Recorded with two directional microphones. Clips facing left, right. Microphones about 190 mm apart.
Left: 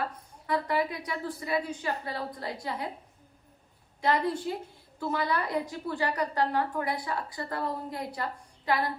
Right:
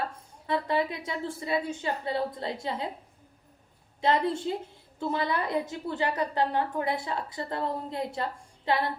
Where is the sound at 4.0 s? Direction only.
25° right (ahead or behind).